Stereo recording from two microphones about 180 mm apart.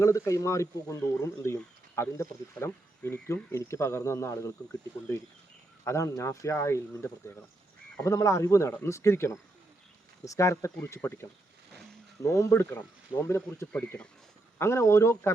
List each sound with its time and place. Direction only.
0.0 s speech: 15° left (ahead or behind)